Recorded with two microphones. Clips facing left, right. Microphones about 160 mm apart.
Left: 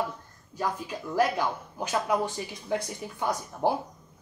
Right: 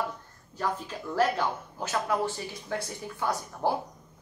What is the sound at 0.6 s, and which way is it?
Speech, 10° left (ahead or behind).